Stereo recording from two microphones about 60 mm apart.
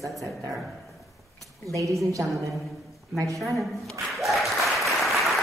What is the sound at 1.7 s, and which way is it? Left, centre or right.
Speech, right.